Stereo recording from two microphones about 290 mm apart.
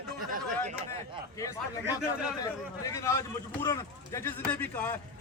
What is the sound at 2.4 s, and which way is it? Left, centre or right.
Speech, centre.